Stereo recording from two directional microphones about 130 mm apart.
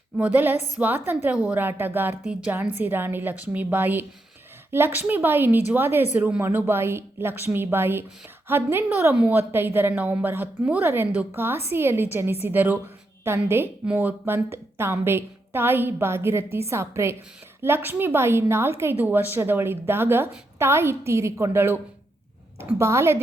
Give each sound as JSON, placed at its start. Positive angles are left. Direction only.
{"t": 0.2, "sound": "a woman's voice", "side_deg": -10}
{"t": 22.8, "sound": "a woman's voice", "side_deg": -20}